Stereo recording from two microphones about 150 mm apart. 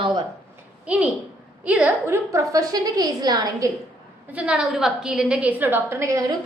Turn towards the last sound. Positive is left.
turn(degrees=-20)  # may be behind; listen again after turning